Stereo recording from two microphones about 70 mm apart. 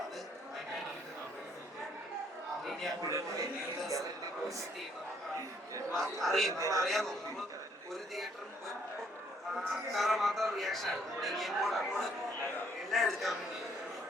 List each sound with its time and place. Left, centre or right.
3.0 s a man's voice: right
5.9 s speech: centre
6.5 s a man's voice: right
6.8 s speech: centre
9.6 s speech: centre